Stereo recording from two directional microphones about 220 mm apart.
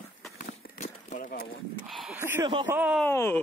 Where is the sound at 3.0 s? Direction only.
10° left (ahead or behind).